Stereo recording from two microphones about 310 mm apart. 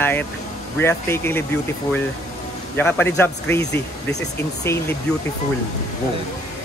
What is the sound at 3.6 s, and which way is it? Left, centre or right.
Speech, left.